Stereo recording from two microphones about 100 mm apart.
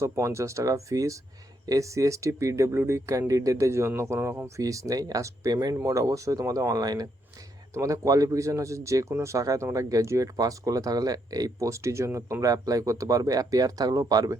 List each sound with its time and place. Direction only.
0.0 s speech: 30° right (ahead or behind)